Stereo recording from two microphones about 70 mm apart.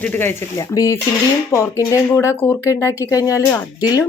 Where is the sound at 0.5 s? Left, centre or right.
Left.